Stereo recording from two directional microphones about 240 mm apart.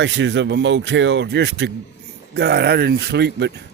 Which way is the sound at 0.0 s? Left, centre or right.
Right.